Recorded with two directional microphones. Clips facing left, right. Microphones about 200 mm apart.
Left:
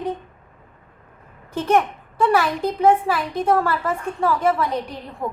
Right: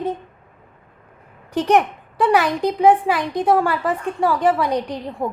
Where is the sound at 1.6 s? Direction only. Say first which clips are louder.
Right 2 dB; 15° right (ahead or behind).